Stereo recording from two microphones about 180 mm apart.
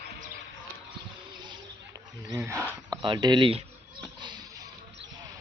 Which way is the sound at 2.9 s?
25° right (ahead or behind).